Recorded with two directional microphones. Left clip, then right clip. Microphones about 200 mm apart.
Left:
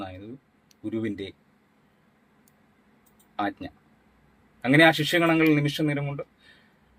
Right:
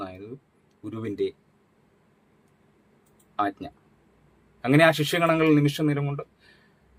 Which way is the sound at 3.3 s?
20° right (ahead or behind).